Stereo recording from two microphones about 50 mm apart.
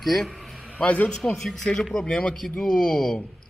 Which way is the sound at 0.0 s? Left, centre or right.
Centre.